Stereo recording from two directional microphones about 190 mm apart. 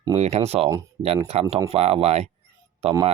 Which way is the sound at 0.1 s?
35° right (ahead or behind).